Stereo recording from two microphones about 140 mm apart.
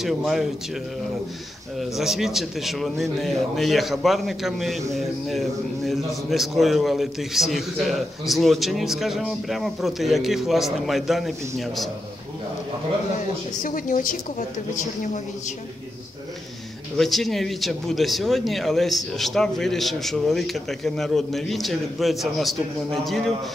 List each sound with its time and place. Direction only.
0.0 s a man's voice: centre (ahead or behind)
1.8 s a man's voice: centre (ahead or behind)
13.6 s a woman's voice: 70° left (ahead or behind)
16.9 s a man's voice: centre (ahead or behind)